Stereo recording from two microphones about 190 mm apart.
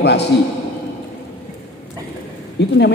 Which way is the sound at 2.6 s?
65° left (ahead or behind).